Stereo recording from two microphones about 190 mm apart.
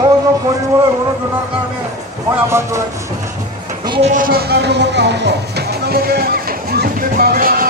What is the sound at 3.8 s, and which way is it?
Speech, 25° right (ahead or behind).